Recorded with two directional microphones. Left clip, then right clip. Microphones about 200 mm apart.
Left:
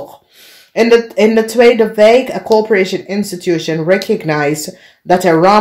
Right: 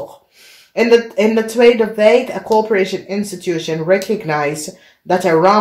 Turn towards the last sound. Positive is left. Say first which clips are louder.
# left 3 dB
turn(degrees=40)  # may be behind; listen again after turning